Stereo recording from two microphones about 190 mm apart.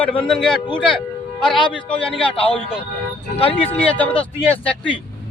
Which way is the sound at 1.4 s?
25° left (ahead or behind).